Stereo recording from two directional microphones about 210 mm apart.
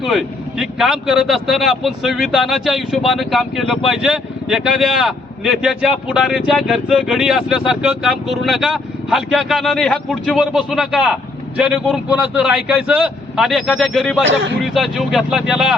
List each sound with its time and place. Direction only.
0.0 s speech: centre (ahead or behind)
14.3 s a man's voice: 60° right (ahead or behind)
14.6 s speech: centre (ahead or behind)